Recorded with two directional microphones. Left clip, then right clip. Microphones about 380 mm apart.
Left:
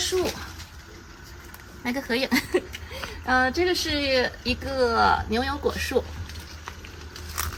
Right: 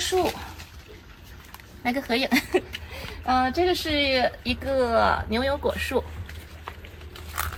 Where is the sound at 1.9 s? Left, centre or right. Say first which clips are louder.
Right 1 dB; centre.